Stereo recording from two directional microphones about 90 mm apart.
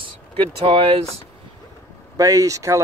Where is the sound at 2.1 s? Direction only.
40° right (ahead or behind).